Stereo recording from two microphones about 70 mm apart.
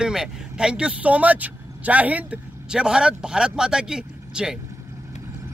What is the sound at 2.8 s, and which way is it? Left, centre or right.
Speech, centre.